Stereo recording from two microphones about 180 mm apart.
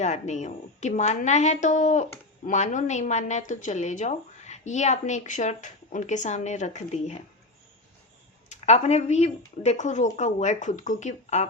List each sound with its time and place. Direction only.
0.0 s speech: 40° left (ahead or behind)
8.4 s speech: 40° left (ahead or behind)